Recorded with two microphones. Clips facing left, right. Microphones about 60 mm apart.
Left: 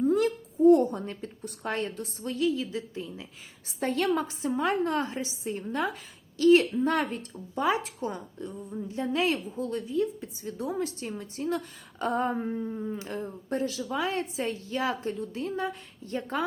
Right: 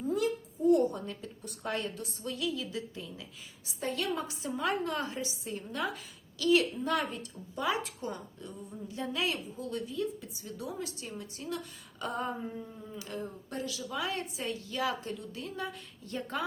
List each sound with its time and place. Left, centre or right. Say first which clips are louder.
0.0 s speech: left 6 dB; left
3.8 s a woman's voice: left 7 dB; left